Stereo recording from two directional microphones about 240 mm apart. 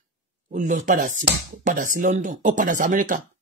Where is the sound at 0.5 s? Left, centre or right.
Right.